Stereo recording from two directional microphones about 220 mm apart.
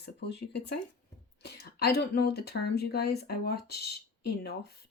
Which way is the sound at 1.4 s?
45° left (ahead or behind).